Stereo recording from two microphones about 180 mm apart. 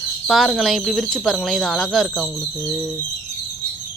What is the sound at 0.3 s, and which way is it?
Speech, centre (ahead or behind).